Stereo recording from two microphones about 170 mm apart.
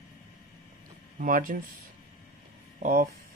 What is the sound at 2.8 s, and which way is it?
Speech, 55° right (ahead or behind).